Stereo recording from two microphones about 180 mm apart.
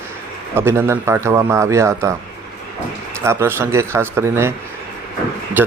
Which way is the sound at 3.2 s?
15° right (ahead or behind).